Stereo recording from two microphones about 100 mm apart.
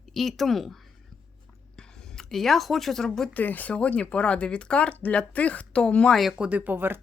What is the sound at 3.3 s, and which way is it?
Speech, 15° left (ahead or behind).